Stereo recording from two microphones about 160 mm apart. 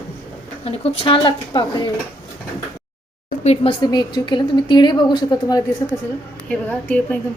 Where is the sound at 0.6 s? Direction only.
40° left (ahead or behind).